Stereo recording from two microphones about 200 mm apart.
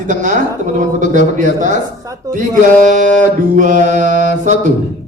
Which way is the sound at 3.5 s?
40° right (ahead or behind).